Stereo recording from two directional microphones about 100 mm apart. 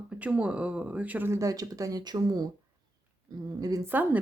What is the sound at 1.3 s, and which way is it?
Speech, 35° right (ahead or behind).